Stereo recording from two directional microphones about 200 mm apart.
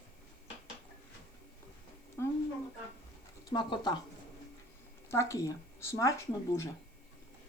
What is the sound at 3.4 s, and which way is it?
Speech, 20° left (ahead or behind).